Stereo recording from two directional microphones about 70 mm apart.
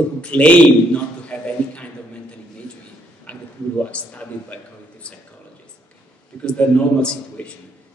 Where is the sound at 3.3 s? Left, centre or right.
Centre.